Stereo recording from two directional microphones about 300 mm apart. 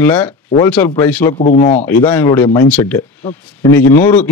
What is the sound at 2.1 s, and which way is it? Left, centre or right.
A man's voice, centre.